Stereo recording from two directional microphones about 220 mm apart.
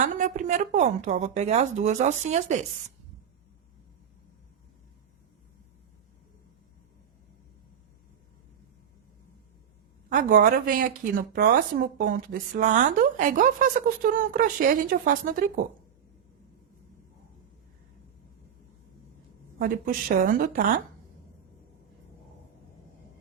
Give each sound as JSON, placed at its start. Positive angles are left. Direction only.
{"t": 0.0, "sound": "speech", "side_deg": -35}
{"t": 10.1, "sound": "speech", "side_deg": -40}
{"t": 19.5, "sound": "speech", "side_deg": -40}